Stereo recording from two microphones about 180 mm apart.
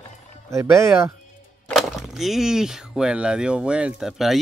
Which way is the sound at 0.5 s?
15° right (ahead or behind).